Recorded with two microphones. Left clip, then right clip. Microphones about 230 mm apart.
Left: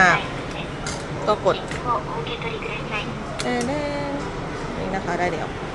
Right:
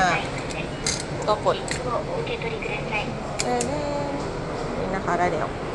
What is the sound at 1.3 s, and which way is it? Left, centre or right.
Speech, left.